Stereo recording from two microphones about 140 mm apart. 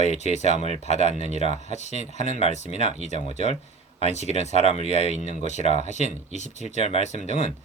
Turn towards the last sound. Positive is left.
turn(degrees=55)  # may be behind; listen again after turning